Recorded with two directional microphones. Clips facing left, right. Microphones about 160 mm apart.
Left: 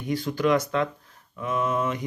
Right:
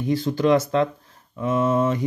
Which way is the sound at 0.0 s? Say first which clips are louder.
Right 4 dB; 30° right (ahead or behind).